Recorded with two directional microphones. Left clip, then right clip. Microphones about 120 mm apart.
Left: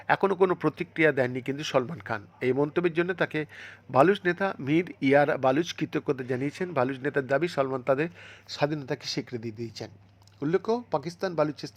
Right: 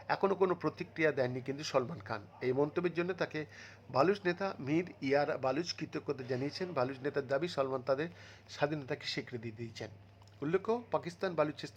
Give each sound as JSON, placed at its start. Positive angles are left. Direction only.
{"t": 0.1, "sound": "speech", "side_deg": 30}